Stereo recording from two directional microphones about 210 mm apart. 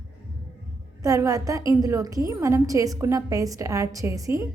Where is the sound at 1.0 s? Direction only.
15° right (ahead or behind).